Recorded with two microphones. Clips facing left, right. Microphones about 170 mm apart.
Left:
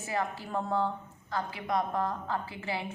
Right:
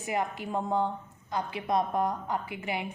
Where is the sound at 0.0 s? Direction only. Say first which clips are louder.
Right 2 dB; 20° right (ahead or behind).